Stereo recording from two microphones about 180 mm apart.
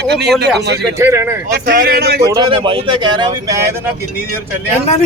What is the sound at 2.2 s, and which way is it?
Speech, 25° right (ahead or behind).